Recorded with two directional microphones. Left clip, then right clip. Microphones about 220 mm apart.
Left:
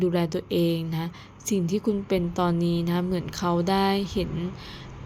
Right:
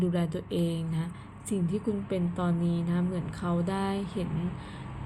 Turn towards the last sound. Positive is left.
turn(degrees=30)  # may be behind; listen again after turning